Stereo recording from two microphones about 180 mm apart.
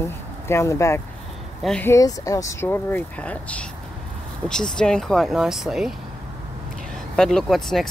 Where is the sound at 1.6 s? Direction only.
Centre (ahead or behind).